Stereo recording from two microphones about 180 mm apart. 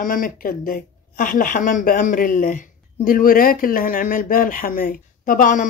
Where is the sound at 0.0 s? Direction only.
50° left (ahead or behind).